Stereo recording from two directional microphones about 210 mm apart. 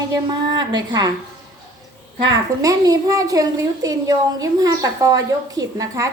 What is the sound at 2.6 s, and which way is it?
A woman's voice, 15° right (ahead or behind).